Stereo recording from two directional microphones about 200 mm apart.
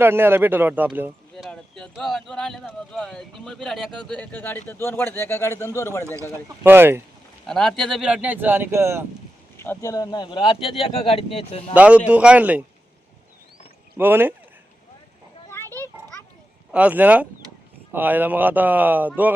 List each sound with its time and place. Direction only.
0.0 s speech: 10° right (ahead or behind); by 6.1 s 15° left (ahead or behind)
6.6 s speech: 10° right (ahead or behind)
7.4 s speech: centre (ahead or behind); by 9.0 s 15° right (ahead or behind)
9.6 s speech: 15° left (ahead or behind)
11.7 s speech: 5° right (ahead or behind)
13.9 s speech: 10° right (ahead or behind)
15.4 s a sound: 10° left (ahead or behind)
16.7 s speech: 10° right (ahead or behind)